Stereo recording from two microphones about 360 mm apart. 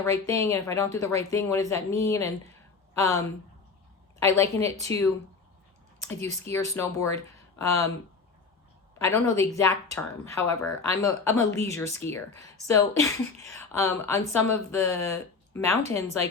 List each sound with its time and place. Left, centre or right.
0.0 s speech: centre
6.1 s speech: centre
9.0 s speech: centre